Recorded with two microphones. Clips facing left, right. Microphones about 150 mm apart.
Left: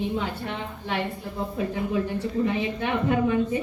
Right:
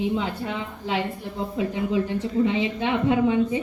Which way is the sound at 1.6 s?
20° right (ahead or behind).